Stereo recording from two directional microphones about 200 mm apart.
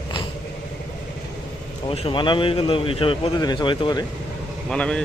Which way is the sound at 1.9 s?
25° left (ahead or behind).